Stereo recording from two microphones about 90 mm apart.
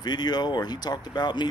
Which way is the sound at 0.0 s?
50° left (ahead or behind).